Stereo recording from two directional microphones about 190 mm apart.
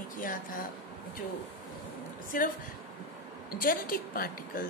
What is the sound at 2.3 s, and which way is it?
Speech, 45° left (ahead or behind).